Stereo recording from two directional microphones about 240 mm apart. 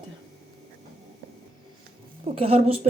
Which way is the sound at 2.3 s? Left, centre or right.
Right.